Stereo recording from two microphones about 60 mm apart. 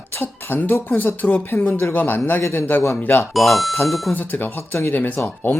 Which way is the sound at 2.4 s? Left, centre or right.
Left.